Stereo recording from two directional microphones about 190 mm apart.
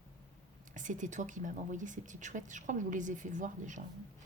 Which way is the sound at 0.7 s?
40° right (ahead or behind).